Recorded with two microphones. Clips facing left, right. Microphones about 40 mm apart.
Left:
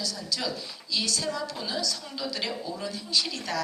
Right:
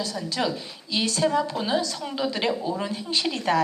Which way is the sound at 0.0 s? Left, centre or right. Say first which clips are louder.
Right 5 dB; right.